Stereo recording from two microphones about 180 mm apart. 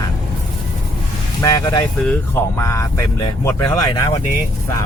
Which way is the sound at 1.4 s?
20° left (ahead or behind).